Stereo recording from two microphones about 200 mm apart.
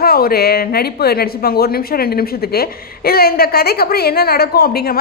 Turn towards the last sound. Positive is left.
turn(degrees=50)  # may be behind; listen again after turning